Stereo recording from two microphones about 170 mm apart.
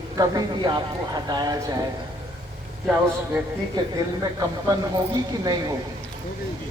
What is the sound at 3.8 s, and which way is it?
A woman's voice, 25° right (ahead or behind).